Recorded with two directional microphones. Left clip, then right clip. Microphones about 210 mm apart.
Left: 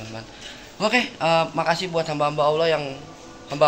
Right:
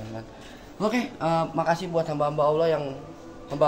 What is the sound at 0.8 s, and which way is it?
A man's voice, centre (ahead or behind).